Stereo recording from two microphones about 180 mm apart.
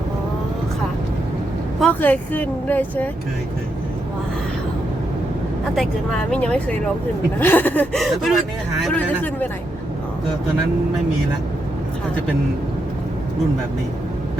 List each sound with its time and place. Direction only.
1.8 s speech: 10° left (ahead or behind)
5.7 s speech: centre (ahead or behind)